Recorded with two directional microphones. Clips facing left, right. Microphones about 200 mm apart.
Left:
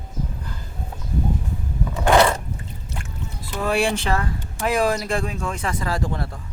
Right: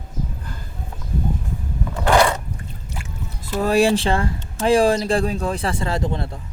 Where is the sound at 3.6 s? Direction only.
35° right (ahead or behind).